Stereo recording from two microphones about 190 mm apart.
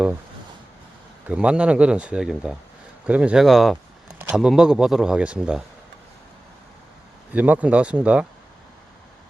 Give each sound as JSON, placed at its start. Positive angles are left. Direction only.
{"t": 1.3, "sound": "speech", "side_deg": -5}
{"t": 7.3, "sound": "speech", "side_deg": -10}